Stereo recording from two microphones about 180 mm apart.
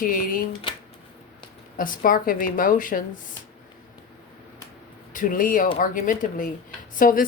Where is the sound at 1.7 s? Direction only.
50° left (ahead or behind).